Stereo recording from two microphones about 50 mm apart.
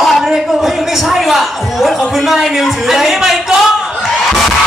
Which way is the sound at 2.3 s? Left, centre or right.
Centre.